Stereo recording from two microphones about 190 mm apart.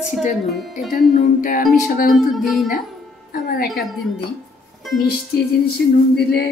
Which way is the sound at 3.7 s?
Centre (ahead or behind).